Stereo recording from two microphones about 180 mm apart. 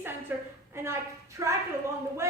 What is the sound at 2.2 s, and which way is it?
Speech, 15° right (ahead or behind).